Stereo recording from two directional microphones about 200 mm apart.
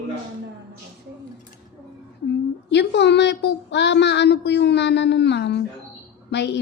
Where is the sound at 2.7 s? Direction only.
60° left (ahead or behind).